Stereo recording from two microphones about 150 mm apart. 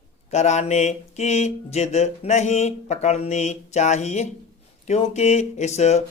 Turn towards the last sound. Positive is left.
turn(degrees=50)  # may be behind; listen again after turning